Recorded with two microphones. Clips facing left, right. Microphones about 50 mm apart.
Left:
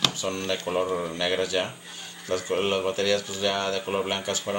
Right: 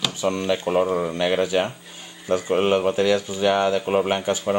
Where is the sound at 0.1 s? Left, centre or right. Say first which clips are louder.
Right 6 dB; centre.